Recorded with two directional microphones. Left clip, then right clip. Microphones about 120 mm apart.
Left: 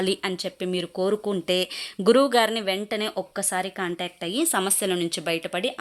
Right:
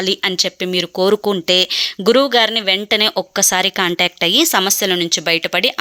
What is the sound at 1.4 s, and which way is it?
A woman's voice, 15° right (ahead or behind).